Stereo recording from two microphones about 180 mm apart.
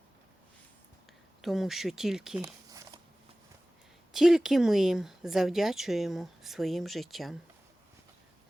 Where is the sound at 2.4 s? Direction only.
20° right (ahead or behind).